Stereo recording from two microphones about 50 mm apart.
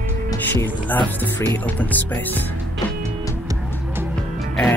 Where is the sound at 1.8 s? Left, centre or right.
Left.